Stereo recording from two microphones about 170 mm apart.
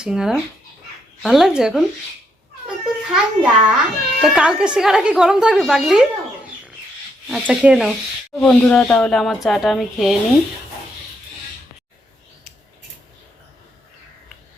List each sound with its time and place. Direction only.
0.0 s a child's voice: 5° right (ahead or behind)
7.3 s speech: 5° right (ahead or behind)